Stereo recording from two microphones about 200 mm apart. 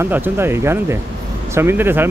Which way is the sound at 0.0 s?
10° right (ahead or behind).